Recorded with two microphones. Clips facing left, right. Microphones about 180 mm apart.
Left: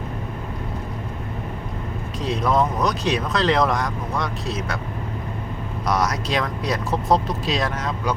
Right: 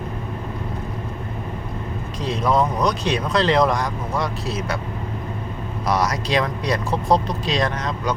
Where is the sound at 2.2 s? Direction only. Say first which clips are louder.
Right 1 dB; centre (ahead or behind).